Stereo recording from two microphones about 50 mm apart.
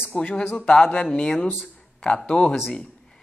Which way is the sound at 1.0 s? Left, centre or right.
Centre.